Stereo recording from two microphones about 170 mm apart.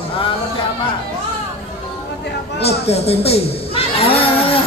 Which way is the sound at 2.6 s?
35° left (ahead or behind).